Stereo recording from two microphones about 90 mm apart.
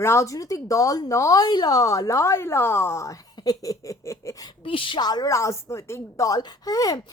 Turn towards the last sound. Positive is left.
turn(degrees=45)  # may be behind; listen again after turning